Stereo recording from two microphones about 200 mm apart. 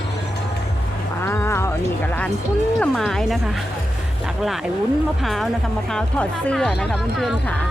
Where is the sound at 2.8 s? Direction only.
Centre (ahead or behind).